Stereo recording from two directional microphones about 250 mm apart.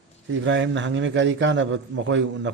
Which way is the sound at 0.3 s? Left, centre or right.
Right.